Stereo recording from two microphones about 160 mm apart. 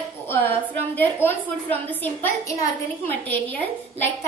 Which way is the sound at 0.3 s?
10° left (ahead or behind).